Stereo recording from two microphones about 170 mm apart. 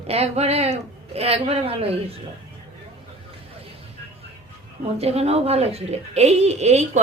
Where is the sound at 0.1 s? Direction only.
40° right (ahead or behind).